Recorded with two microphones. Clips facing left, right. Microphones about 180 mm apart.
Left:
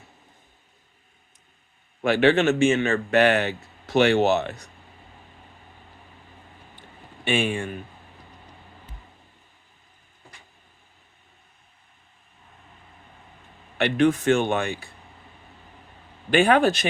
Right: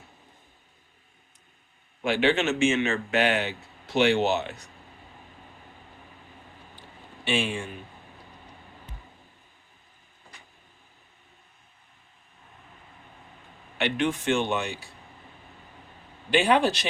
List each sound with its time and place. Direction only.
2.0 s speech: 50° left (ahead or behind)
7.3 s speech: 55° left (ahead or behind)
13.7 s speech: 45° left (ahead or behind)
16.3 s speech: 50° left (ahead or behind)